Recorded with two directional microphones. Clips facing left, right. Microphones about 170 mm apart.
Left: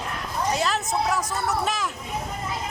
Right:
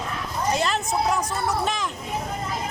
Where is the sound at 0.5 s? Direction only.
5° left (ahead or behind).